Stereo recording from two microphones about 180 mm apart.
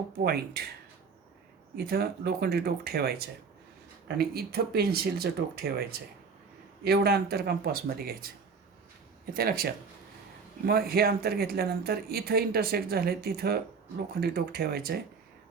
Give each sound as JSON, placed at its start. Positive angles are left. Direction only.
{"t": 0.3, "sound": "speech", "side_deg": -60}
{"t": 1.7, "sound": "speech", "side_deg": -60}
{"t": 9.3, "sound": "speech", "side_deg": -55}